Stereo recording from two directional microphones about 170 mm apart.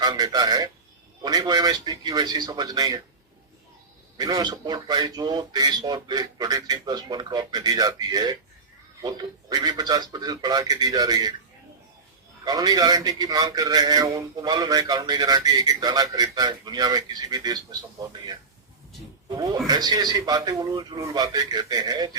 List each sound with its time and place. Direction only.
0.0 s a man's voice: 20° right (ahead or behind)
4.2 s a man's voice: 20° right (ahead or behind)
12.5 s a man's voice: 25° right (ahead or behind)
19.6 s a man's voice: 25° right (ahead or behind)